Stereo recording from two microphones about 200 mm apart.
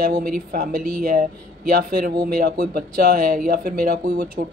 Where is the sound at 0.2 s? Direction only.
45° right (ahead or behind).